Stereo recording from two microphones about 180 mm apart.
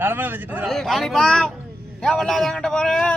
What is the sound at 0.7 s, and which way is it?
A man's voice, centre (ahead or behind).